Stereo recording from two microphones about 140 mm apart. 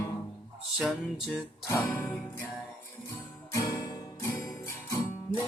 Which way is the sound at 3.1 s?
20° left (ahead or behind).